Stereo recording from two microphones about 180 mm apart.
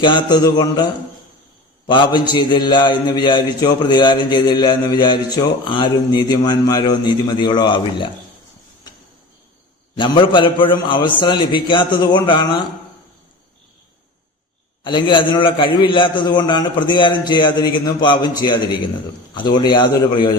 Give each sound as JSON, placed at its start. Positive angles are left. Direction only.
{"t": 0.0, "sound": "a man's voice", "side_deg": 25}
{"t": 1.9, "sound": "a man's voice", "side_deg": 25}
{"t": 10.0, "sound": "a man's voice", "side_deg": 25}
{"t": 14.8, "sound": "a man's voice", "side_deg": 25}